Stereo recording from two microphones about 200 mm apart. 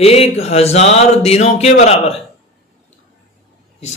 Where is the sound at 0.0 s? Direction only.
30° left (ahead or behind).